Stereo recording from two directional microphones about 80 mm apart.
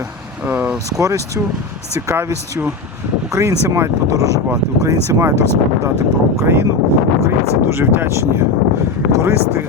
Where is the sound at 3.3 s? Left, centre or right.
Right.